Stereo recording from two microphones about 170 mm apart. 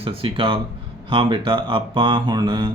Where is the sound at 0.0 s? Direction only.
30° right (ahead or behind).